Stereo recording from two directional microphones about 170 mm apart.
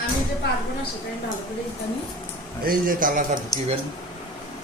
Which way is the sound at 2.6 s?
55° right (ahead or behind).